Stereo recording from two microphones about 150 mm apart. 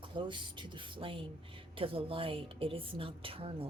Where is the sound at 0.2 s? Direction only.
30° right (ahead or behind).